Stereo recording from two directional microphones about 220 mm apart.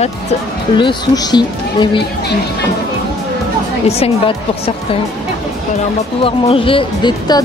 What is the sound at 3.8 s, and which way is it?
Speech, 25° left (ahead or behind).